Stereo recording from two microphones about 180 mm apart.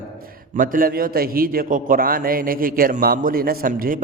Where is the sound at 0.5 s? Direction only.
50° right (ahead or behind).